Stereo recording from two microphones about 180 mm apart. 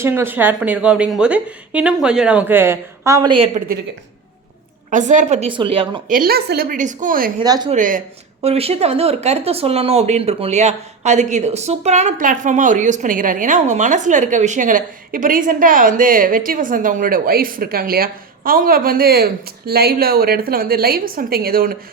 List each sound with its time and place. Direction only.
0.0 s a woman's voice: 15° right (ahead or behind)
4.9 s a woman's voice: 45° right (ahead or behind); by 6.0 s 30° right (ahead or behind)
6.1 s speech: 55° right (ahead or behind)
7.4 s speech: 20° right (ahead or behind)
7.7 s speech: 45° right (ahead or behind)
8.4 s speech: 35° right (ahead or behind); by 21.8 s 55° right (ahead or behind)